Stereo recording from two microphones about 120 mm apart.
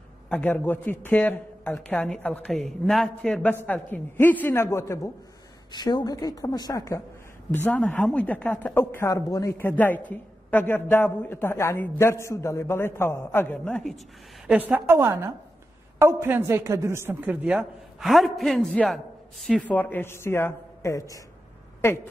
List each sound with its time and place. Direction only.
0.3 s a man's voice: 15° left (ahead or behind)
5.7 s a woman's voice: 35° left (ahead or behind)
7.5 s a man's voice: 15° left (ahead or behind)
14.5 s a woman's voice: 15° right (ahead or behind); by 22.0 s 25° left (ahead or behind)